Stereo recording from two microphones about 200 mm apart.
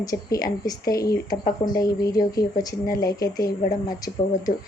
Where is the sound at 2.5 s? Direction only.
45° left (ahead or behind).